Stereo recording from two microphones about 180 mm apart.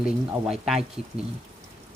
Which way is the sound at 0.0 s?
5° right (ahead or behind).